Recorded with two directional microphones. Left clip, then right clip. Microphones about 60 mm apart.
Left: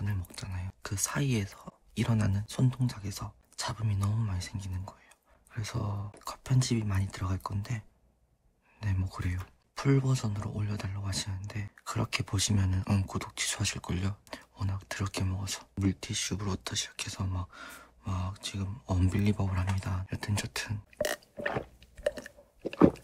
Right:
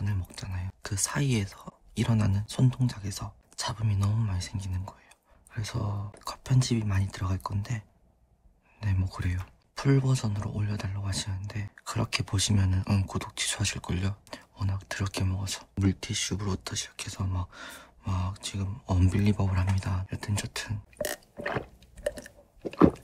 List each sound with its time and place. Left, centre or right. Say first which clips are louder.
0.0 s whispering: right 2 dB; right
2.7 s speech: right 3 dB; right
3.8 s speech: right 3 dB; right; by 6.0 s centre
6.1 s speech: right 3 dB; right
8.9 s speech: right 2 dB; right
14.3 s a sound: right 1 dB; centre
14.7 s speech: right 2 dB; right
16.1 s speech: right 2 dB; centre
17.5 s gasp: right 3 dB; right
18.0 s speech: right 2 dB; right
20.1 s a sound: even; centre
20.9 s burping: left 2 dB; centre
22.0 s chewing: left 1 dB; centre